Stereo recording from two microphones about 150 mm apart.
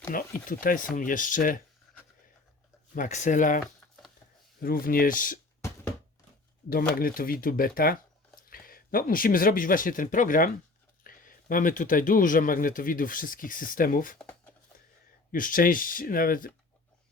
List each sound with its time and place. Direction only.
0.1 s a man's voice: 70° left (ahead or behind)
2.9 s a man's voice: 60° left (ahead or behind)
4.6 s speech: 75° left (ahead or behind)
6.9 s a man's voice: 70° left (ahead or behind)
15.3 s speech: 65° left (ahead or behind)